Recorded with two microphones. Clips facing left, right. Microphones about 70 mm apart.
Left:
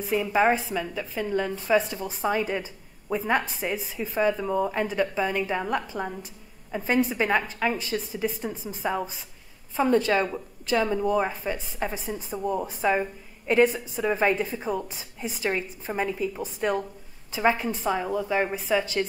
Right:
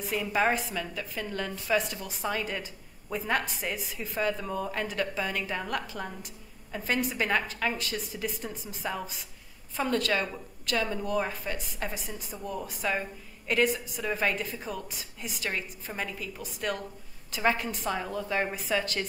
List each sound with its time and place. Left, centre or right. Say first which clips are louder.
0.2 s a woman's voice: left 4 dB; centre
4.1 s a woman's voice: left 6 dB; centre
11.9 s a woman's voice: left 7 dB; left
17.4 s a woman's voice: left 4 dB; centre